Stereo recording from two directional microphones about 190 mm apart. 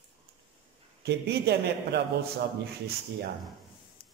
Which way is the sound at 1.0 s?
60° right (ahead or behind).